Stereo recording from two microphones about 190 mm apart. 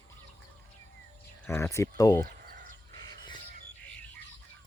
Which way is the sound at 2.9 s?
25° left (ahead or behind).